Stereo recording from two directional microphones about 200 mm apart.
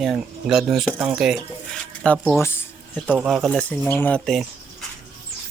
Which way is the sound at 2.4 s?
10° left (ahead or behind).